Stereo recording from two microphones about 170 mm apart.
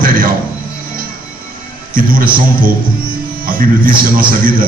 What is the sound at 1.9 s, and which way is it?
A man's voice, 55° right (ahead or behind).